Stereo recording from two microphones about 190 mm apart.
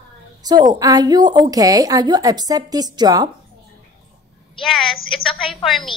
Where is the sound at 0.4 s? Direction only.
20° right (ahead or behind).